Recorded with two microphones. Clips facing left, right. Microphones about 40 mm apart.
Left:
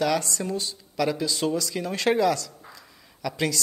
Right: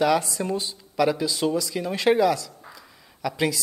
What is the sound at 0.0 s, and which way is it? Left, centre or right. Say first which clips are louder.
Speech: right 3 dB; centre.